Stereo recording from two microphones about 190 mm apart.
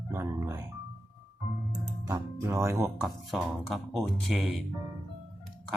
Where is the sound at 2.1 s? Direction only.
15° right (ahead or behind).